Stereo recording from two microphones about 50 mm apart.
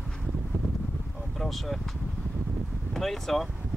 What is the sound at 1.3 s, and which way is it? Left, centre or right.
Speech, centre.